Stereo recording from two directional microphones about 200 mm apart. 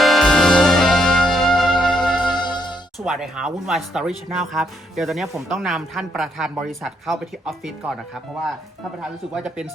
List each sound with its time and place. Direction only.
0.0 s music: centre (ahead or behind)
2.4 s music: 20° left (ahead or behind)
3.0 s speech: 5° right (ahead or behind)
9.0 s speech: 5° right (ahead or behind)